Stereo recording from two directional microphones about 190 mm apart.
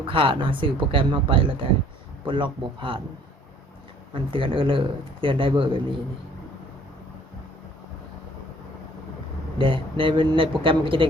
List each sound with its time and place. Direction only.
0.0 s speech: 30° right (ahead or behind)
4.1 s speech: 25° right (ahead or behind)
9.6 s speech: 25° right (ahead or behind)